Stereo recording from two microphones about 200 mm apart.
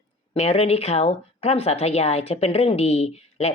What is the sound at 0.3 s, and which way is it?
Speech, 30° left (ahead or behind).